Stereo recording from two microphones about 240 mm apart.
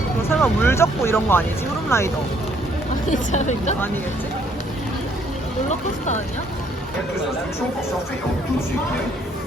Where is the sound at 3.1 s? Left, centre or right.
Left.